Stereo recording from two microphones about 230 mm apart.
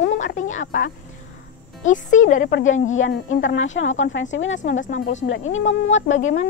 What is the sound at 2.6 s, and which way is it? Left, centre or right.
Speech, left.